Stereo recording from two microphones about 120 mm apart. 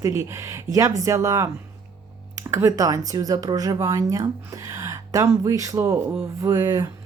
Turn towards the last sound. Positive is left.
turn(degrees=-25)  # may be behind; listen again after turning